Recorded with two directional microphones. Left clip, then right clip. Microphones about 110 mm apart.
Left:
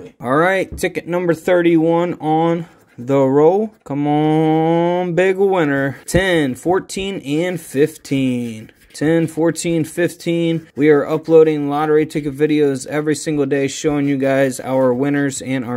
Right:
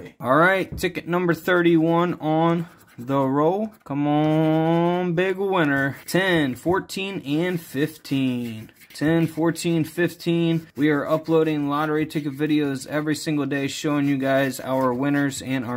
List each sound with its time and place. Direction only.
0.2 s speech: 25° left (ahead or behind)
1.0 s speech: 15° left (ahead or behind)
3.1 s speech: 30° left (ahead or behind)
3.9 s speech: 15° left (ahead or behind)
5.1 s speech: 35° left (ahead or behind)